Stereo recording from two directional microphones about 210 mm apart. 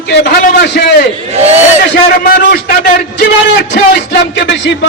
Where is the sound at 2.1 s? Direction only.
45° left (ahead or behind).